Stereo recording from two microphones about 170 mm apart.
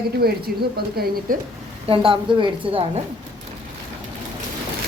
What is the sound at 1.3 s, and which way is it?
Speech, 55° right (ahead or behind).